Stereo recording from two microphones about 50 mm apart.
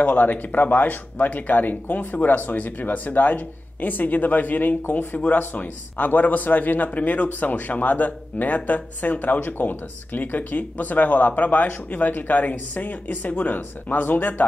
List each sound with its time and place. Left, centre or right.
0.0 s speech: left